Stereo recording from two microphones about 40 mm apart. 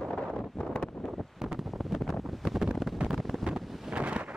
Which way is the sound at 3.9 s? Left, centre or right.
Right.